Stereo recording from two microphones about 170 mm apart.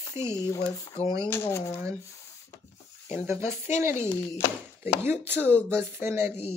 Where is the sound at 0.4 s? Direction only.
20° left (ahead or behind).